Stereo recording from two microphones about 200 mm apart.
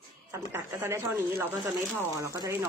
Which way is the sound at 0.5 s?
10° right (ahead or behind).